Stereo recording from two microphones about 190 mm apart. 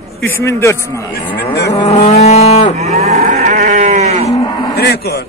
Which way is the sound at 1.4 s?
60° left (ahead or behind).